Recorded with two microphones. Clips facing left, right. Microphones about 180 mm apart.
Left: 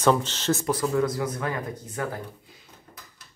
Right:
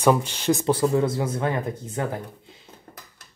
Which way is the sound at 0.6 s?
30° right (ahead or behind).